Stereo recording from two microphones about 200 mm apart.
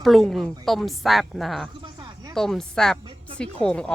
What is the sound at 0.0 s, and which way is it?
Speech, centre (ahead or behind).